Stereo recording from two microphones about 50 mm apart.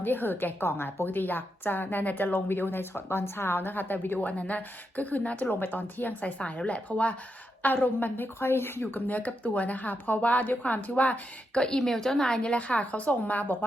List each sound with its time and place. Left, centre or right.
0.0 s a woman's voice: left
6.4 s a woman's voice: left
7.6 s a woman's voice: left
8.4 s a woman's voice: left
11.8 s a woman's voice: centre; by 13.7 s left